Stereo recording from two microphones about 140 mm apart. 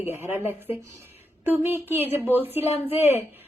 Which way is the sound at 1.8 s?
15° right (ahead or behind).